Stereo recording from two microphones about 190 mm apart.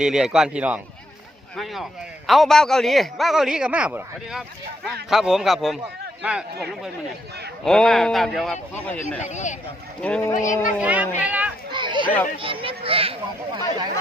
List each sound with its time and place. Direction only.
0.0 s a man's voice: 5° right (ahead or behind)
9.2 s speech: 40° left (ahead or behind)
10.0 s speech: 10° left (ahead or behind)
10.3 s speech: 40° left (ahead or behind)
10.8 s speech: 5° right (ahead or behind)
11.7 s speech: 25° right (ahead or behind)